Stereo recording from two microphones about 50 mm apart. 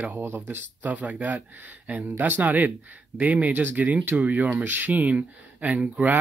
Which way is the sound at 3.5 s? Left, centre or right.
Right.